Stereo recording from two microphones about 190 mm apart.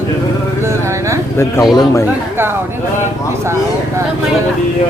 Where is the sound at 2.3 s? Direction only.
10° right (ahead or behind).